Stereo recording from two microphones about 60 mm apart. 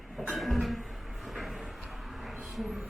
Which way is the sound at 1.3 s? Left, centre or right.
Centre.